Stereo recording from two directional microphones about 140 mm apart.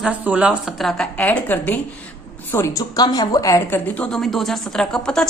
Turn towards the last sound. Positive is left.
turn(degrees=5)  # may be behind; listen again after turning